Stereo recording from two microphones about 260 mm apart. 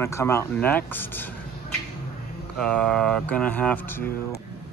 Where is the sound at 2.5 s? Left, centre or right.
Centre.